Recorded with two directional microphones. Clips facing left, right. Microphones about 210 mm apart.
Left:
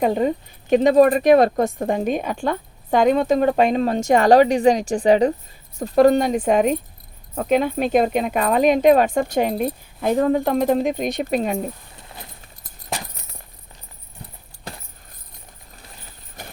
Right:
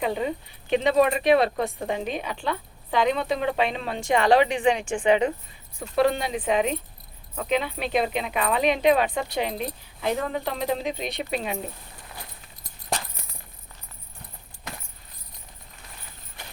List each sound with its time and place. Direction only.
0.0 s speech: 45° left (ahead or behind)
12.9 s a sound: 5° left (ahead or behind)
14.7 s keys jangling: 30° left (ahead or behind)